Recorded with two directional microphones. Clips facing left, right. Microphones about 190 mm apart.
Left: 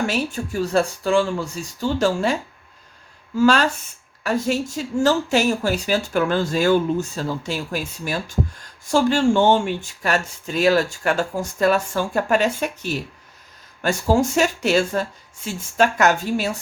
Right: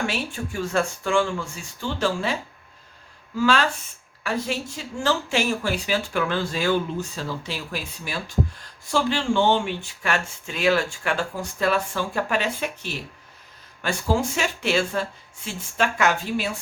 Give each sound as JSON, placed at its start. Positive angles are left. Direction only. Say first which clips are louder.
{"t": 0.1, "sound": "speech", "louder": "left 5 dB", "side_deg": 40}
{"t": 3.3, "sound": "speech", "louder": "left 4 dB", "side_deg": 45}